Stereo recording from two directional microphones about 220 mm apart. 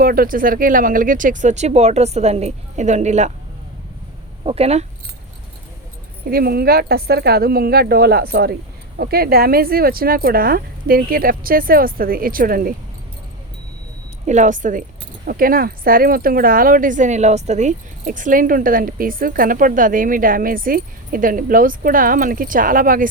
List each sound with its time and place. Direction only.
0.0 s speech: 40° right (ahead or behind)
4.4 s speech: 25° right (ahead or behind)
6.2 s speech: 45° right (ahead or behind)
14.3 s speech: 35° right (ahead or behind)